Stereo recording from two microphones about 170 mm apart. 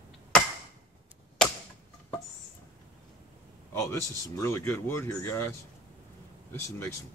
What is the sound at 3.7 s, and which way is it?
Speech, 15° left (ahead or behind).